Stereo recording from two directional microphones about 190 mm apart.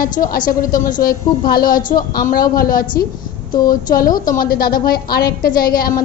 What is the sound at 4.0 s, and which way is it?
A woman's voice, 45° left (ahead or behind).